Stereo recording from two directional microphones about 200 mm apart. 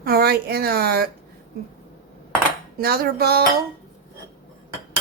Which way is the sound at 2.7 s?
50° right (ahead or behind).